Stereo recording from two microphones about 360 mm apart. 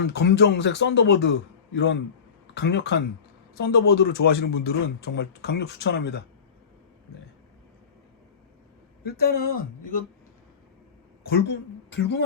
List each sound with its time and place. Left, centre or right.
0.0 s a man's voice: left
9.0 s a man's voice: left
11.3 s speech: left